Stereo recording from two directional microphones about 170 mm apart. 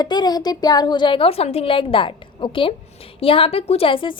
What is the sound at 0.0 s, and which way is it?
A woman's voice, 25° left (ahead or behind).